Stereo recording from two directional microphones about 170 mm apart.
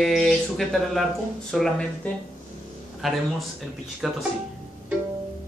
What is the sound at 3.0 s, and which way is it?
Speech, centre (ahead or behind).